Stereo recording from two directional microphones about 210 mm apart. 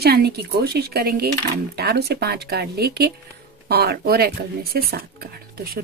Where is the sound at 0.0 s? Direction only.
50° right (ahead or behind).